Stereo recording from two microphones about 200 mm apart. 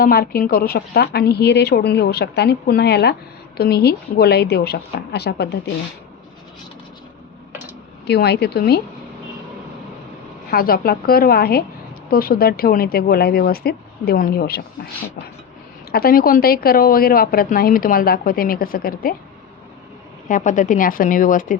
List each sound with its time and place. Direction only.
0.0 s a woman's voice: 45° left (ahead or behind)
8.0 s a woman's voice: 55° left (ahead or behind)
10.5 s a woman's voice: 50° left (ahead or behind)
15.9 s a woman's voice: 50° left (ahead or behind)
20.2 s a woman's voice: 40° left (ahead or behind)